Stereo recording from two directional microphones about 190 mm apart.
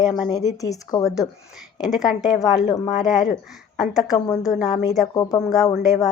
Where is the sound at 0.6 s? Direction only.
20° left (ahead or behind).